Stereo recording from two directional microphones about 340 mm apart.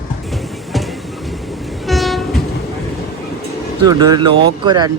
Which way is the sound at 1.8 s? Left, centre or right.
Centre.